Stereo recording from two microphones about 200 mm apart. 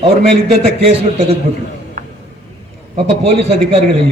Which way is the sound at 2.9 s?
30° right (ahead or behind).